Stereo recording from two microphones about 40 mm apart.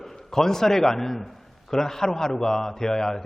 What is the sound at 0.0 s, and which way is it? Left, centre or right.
A man's voice, centre.